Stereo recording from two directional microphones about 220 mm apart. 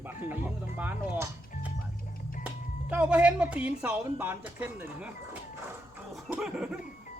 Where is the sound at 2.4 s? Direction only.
5° right (ahead or behind).